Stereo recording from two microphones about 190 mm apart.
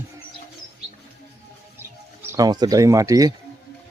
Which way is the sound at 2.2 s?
15° right (ahead or behind).